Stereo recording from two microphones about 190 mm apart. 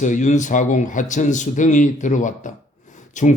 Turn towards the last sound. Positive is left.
turn(degrees=40)  # may be behind; listen again after turning